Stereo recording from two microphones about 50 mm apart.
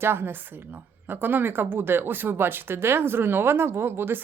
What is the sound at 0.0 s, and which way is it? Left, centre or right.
A woman's voice, right.